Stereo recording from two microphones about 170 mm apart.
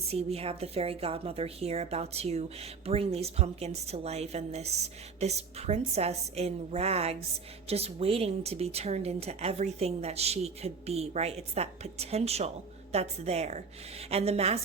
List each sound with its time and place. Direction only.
0.1 s a woman's voice: 35° right (ahead or behind)